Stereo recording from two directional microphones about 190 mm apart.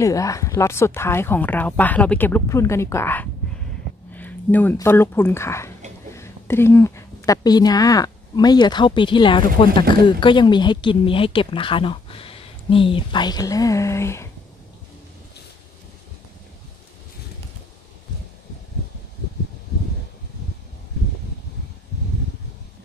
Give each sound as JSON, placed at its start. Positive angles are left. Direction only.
{"t": 0.0, "sound": "a woman's voice", "side_deg": 15}